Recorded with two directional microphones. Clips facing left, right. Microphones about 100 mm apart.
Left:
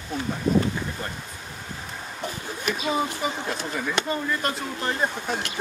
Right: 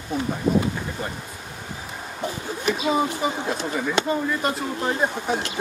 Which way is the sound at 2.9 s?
5° right (ahead or behind).